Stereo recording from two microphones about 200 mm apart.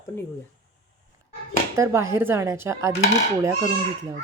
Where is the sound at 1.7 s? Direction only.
15° right (ahead or behind).